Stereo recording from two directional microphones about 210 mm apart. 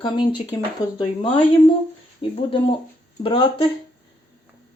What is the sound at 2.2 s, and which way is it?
Speech, 25° left (ahead or behind).